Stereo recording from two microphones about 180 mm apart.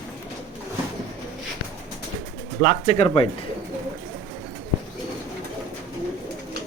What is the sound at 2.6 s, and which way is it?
Speech, 40° left (ahead or behind).